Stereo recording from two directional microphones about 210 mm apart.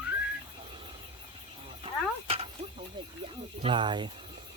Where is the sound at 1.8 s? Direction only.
25° right (ahead or behind).